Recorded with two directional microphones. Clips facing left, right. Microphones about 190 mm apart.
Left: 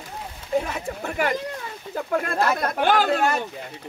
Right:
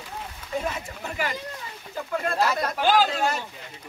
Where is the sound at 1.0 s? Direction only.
55° left (ahead or behind).